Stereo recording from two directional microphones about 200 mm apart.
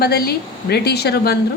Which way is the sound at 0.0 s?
50° left (ahead or behind).